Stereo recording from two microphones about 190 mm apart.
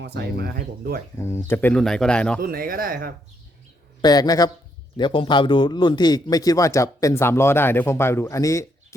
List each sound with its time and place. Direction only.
0.0 s speech: 60° right (ahead or behind)
1.2 s speech: 15° left (ahead or behind)
2.4 s speech: 50° right (ahead or behind)
4.0 s a man's voice: 20° left (ahead or behind)